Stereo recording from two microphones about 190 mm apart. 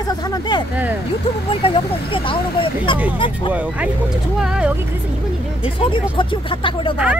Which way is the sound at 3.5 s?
10° right (ahead or behind).